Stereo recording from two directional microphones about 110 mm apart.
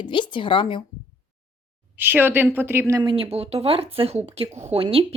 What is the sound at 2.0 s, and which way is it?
Speech, 20° right (ahead or behind).